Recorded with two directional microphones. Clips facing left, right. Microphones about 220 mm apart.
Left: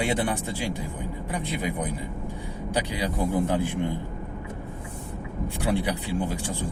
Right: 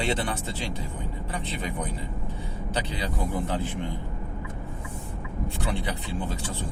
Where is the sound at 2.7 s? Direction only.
15° left (ahead or behind).